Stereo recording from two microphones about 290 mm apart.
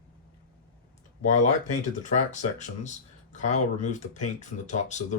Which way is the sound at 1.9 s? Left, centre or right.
Left.